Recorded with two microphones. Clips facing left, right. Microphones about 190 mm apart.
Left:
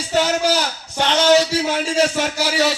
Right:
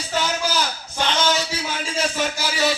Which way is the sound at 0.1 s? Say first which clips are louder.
Left 6 dB; 70° left (ahead or behind).